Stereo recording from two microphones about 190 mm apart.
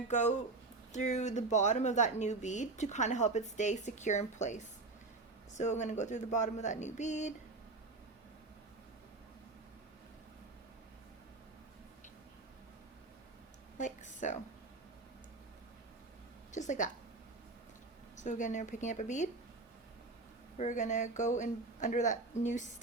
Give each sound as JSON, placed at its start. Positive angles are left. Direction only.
{"t": 0.1, "sound": "speech", "side_deg": 40}
{"t": 13.7, "sound": "a sound", "side_deg": 40}
{"t": 16.5, "sound": "a woman's voice", "side_deg": 40}
{"t": 18.2, "sound": "speech", "side_deg": 40}
{"t": 20.6, "sound": "speech", "side_deg": 40}